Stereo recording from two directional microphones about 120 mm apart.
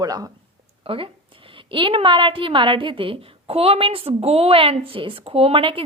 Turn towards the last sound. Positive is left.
turn(degrees=-45)  # may be behind; listen again after turning